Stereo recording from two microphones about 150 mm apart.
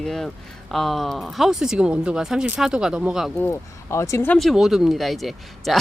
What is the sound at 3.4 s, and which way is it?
Speech, 15° left (ahead or behind).